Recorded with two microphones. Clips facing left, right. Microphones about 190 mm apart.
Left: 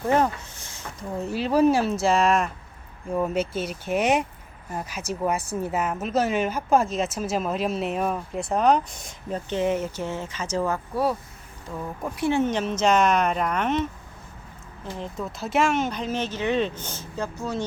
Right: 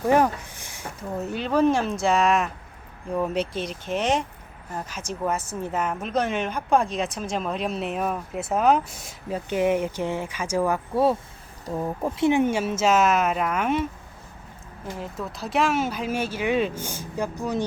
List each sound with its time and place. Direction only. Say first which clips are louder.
0.1 s a sound: right 2 dB; 15° right (ahead or behind)
1.3 s speech: left 1 dB; 5° left (ahead or behind); by 10.8 s 10° right (ahead or behind)
10.9 s speech: right 4 dB; 25° right (ahead or behind); by 13.8 s 10° right (ahead or behind)
14.9 s speech: left 1 dB; 5° right (ahead or behind)